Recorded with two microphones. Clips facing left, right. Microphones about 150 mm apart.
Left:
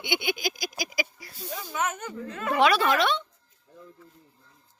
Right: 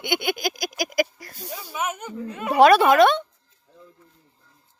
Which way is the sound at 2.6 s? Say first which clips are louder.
Right 9 dB; 50° right (ahead or behind).